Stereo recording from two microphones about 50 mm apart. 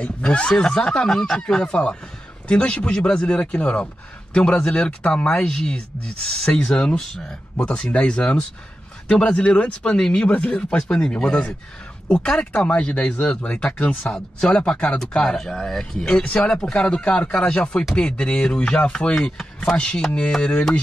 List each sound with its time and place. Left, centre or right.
0.0 s speech: left
10.2 s speech: left
10.8 s speech: centre
15.0 s speech: centre
15.9 s speech: centre